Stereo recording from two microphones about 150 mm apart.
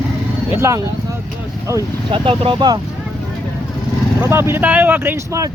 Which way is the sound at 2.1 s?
35° right (ahead or behind).